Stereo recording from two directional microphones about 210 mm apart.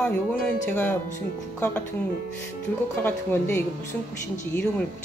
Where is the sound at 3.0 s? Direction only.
10° left (ahead or behind).